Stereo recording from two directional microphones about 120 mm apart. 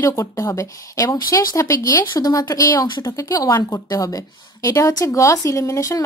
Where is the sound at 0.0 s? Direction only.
25° left (ahead or behind).